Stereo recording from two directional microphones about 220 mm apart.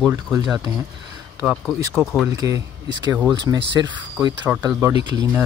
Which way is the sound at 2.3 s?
15° right (ahead or behind).